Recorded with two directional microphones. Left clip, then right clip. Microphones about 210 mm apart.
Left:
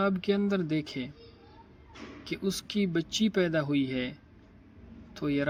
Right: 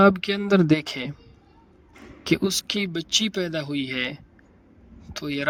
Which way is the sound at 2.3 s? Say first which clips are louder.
Right 11 dB; 45° right (ahead or behind).